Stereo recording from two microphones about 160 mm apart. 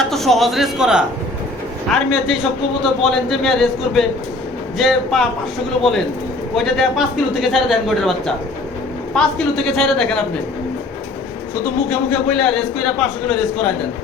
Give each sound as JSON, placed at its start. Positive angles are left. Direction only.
{"t": 0.0, "sound": "a man's voice", "side_deg": 0}
{"t": 9.1, "sound": "a man's voice", "side_deg": 0}
{"t": 11.9, "sound": "a man's voice", "side_deg": 5}